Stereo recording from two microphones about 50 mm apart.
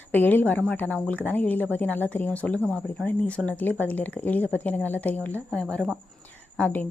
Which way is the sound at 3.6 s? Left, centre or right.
Left.